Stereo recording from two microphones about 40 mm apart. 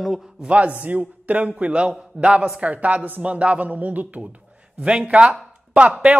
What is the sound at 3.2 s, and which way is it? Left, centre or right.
Speech, right.